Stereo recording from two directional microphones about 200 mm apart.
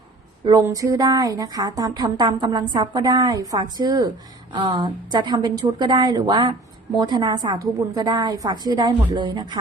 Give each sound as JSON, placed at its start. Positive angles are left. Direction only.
{"t": 0.4, "sound": "a woman's voice", "side_deg": -15}